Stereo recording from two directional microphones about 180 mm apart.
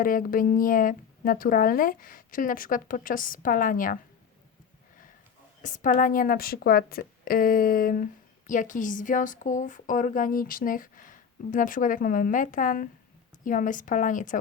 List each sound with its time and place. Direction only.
0.0 s a woman's voice: 50° left (ahead or behind)
5.6 s a woman's voice: 45° left (ahead or behind)